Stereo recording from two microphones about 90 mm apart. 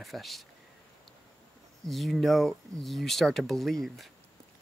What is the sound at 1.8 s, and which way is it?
Speech, centre (ahead or behind).